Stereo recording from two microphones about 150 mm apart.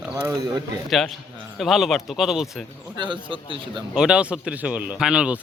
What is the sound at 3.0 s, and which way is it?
Speech, 35° right (ahead or behind).